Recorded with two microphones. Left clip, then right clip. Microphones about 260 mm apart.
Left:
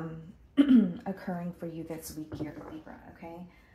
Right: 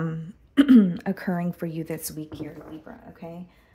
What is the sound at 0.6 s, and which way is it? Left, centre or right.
A woman's voice, right.